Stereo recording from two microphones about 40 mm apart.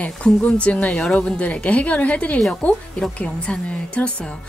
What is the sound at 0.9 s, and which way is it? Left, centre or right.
Speech, centre.